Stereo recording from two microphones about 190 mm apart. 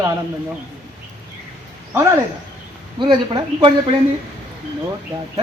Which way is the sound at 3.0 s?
25° right (ahead or behind).